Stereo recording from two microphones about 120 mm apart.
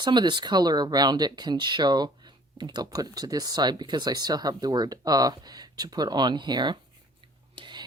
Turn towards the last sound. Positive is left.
turn(degrees=-40)  # may be behind; listen again after turning